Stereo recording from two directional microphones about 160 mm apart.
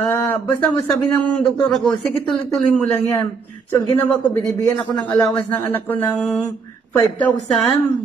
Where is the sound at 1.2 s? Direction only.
5° left (ahead or behind).